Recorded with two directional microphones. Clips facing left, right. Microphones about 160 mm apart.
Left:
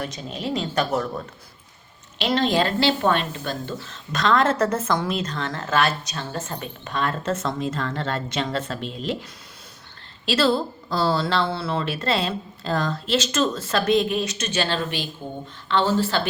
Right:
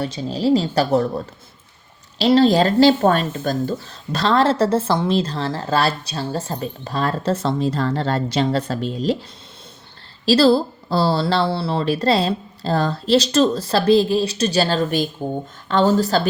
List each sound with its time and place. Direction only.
0.0 s speech: 30° right (ahead or behind)
10.2 s speech: 35° right (ahead or behind)